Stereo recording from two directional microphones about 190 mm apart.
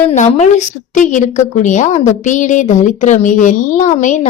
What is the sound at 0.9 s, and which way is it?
Speech, 40° left (ahead or behind).